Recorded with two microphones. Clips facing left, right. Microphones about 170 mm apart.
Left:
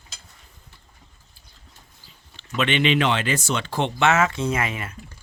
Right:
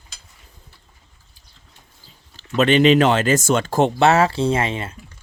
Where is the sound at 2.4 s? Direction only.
40° right (ahead or behind).